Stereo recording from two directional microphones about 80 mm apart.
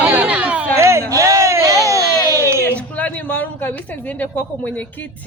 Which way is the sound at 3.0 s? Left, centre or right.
Left.